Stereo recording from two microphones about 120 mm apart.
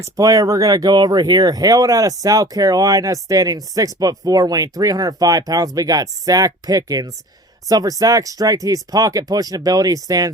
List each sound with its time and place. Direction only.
0.0 s speech: 30° right (ahead or behind)